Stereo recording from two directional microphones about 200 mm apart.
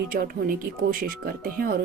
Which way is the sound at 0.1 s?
45° right (ahead or behind).